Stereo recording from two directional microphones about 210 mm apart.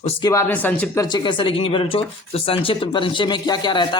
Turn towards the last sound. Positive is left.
turn(degrees=20)  # may be behind; listen again after turning